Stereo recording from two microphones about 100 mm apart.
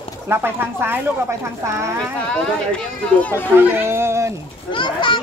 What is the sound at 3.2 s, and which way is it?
Speech, 15° left (ahead or behind).